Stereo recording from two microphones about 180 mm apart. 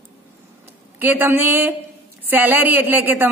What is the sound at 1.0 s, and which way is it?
A woman's voice, 10° right (ahead or behind).